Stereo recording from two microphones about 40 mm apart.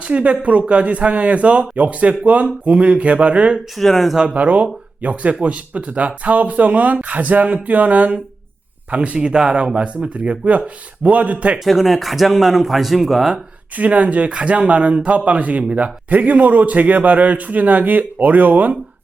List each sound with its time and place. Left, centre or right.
0.0 s speech: right
3.8 s speech: centre
4.4 s speech: right
8.9 s speech: right
11.6 s speech: centre
13.7 s speech: right